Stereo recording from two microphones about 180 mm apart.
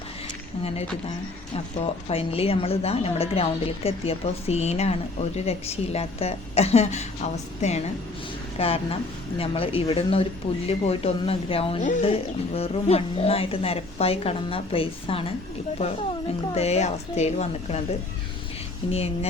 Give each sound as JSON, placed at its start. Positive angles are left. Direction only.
{"t": 1.5, "sound": "a woman's voice", "side_deg": 35}
{"t": 16.6, "sound": "a woman's voice", "side_deg": 40}
{"t": 18.9, "sound": "a woman's voice", "side_deg": 35}